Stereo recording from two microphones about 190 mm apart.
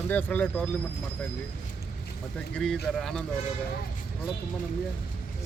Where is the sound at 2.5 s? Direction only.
5° left (ahead or behind).